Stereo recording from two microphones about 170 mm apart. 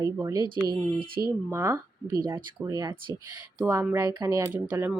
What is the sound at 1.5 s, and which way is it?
Speech, 15° right (ahead or behind).